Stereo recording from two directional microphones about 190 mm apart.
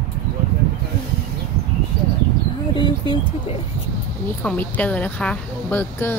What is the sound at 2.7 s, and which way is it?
Speech, 25° left (ahead or behind).